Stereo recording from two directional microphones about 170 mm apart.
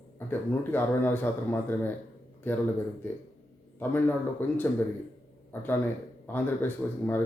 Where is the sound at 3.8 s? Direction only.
10° left (ahead or behind).